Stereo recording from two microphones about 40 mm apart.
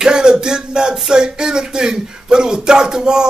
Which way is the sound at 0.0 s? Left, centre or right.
Centre.